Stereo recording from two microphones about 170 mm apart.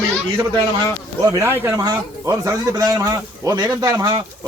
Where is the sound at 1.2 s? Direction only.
20° right (ahead or behind).